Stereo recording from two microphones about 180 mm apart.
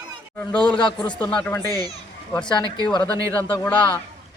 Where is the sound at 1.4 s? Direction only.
10° left (ahead or behind).